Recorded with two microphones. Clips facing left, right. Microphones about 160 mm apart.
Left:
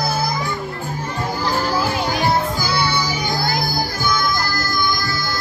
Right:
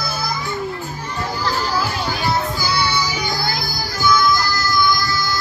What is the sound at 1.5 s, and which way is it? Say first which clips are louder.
Children playing: left 3 dB; 50° left (ahead or behind).